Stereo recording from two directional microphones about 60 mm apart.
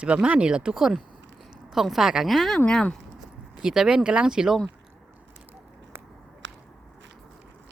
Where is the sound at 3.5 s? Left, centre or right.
Centre.